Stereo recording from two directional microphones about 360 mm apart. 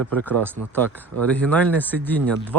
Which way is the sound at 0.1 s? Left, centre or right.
Centre.